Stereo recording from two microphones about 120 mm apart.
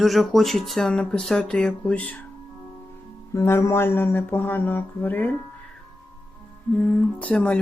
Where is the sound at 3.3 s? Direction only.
25° left (ahead or behind).